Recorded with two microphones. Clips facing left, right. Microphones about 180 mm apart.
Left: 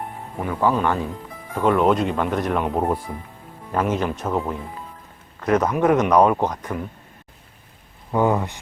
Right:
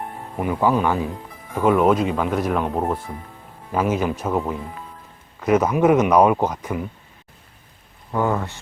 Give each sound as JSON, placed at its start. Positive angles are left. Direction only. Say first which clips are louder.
{"t": 0.4, "sound": "a man's voice", "louder": "right 1 dB", "side_deg": -10}
{"t": 3.7, "sound": "a man's voice", "louder": "right 1 dB", "side_deg": -5}
{"t": 8.1, "sound": "speech", "louder": "left 2 dB", "side_deg": 15}